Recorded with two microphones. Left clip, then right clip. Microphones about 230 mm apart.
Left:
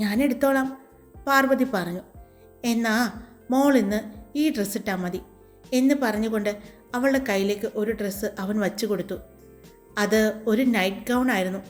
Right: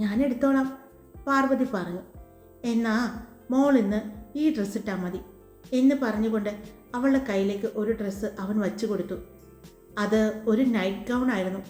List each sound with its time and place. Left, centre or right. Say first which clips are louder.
0.0 s a woman's voice: left 3 dB; left